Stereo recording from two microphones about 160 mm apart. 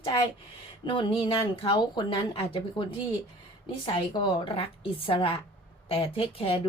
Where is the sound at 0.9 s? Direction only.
30° left (ahead or behind).